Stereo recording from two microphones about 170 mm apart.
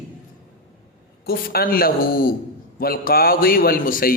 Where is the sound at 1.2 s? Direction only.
65° left (ahead or behind).